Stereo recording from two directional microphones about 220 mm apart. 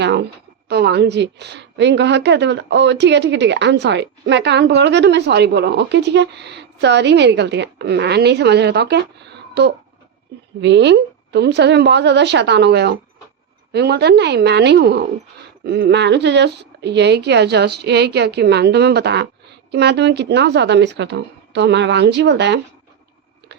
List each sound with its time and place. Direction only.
0.0 s a woman's voice: 50° right (ahead or behind)